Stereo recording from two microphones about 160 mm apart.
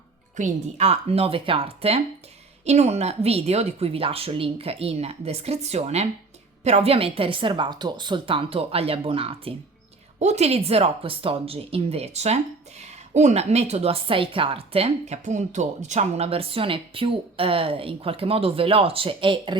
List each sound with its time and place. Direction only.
0.3 s a woman's voice: 45° right (ahead or behind)